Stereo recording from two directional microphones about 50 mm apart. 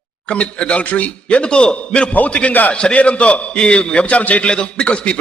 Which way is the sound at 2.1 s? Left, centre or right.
Left.